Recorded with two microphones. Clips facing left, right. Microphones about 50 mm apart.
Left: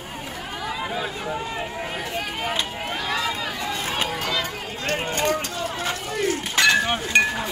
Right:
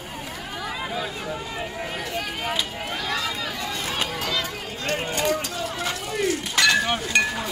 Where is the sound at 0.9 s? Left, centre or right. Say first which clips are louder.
Left 2 dB; left.